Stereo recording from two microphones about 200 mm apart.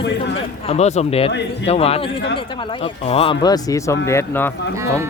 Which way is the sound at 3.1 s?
25° left (ahead or behind).